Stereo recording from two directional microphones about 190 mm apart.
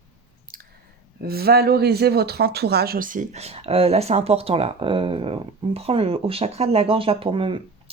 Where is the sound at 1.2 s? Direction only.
55° right (ahead or behind).